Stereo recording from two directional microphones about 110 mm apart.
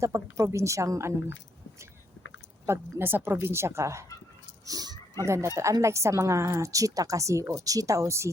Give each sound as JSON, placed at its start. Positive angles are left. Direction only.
{"t": 0.0, "sound": "a woman's voice", "side_deg": -30}
{"t": 2.6, "sound": "a woman's voice", "side_deg": -20}
{"t": 4.6, "sound": "a sound", "side_deg": -35}
{"t": 5.5, "sound": "a woman's voice", "side_deg": -25}